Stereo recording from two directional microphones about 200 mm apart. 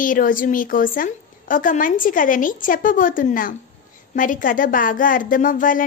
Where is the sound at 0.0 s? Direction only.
40° left (ahead or behind).